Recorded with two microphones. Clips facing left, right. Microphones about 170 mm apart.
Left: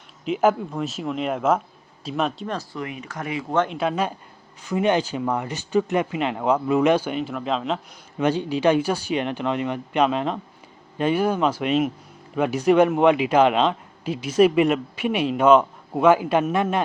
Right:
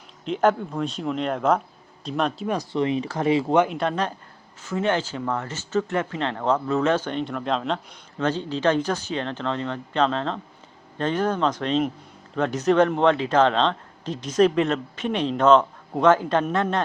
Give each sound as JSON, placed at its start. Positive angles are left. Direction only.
{"t": 0.3, "sound": "speech", "side_deg": 5}
{"t": 2.7, "sound": "speech", "side_deg": -25}
{"t": 3.7, "sound": "a man's voice", "side_deg": 5}
{"t": 8.2, "sound": "a man's voice", "side_deg": 15}